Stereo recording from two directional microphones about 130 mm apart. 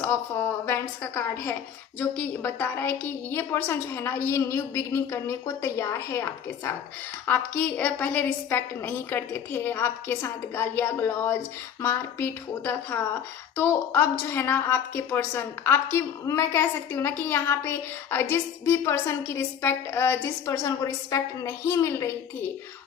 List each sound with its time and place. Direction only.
0.0 s a woman's voice: 20° left (ahead or behind)
7.3 s a woman's voice: 15° left (ahead or behind)